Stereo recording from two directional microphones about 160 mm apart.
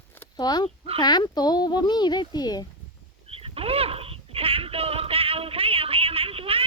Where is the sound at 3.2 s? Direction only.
35° right (ahead or behind).